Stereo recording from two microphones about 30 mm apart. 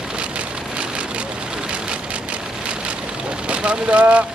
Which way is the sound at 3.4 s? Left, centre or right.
Right.